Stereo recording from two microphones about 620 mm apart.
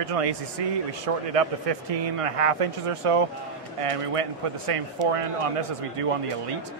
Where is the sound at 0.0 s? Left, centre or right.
Right.